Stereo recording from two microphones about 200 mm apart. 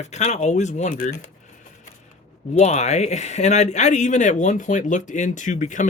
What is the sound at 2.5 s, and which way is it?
Speech, 35° left (ahead or behind).